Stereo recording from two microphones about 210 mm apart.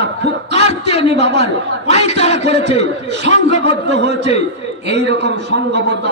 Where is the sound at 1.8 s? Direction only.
30° left (ahead or behind).